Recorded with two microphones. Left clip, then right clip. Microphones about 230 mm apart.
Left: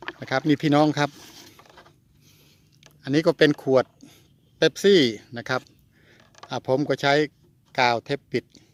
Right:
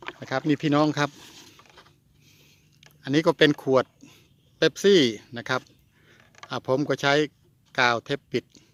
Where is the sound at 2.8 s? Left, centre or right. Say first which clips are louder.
Left 1 dB; centre.